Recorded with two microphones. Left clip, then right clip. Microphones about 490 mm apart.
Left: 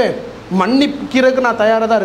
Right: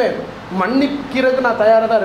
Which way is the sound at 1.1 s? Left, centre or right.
Left.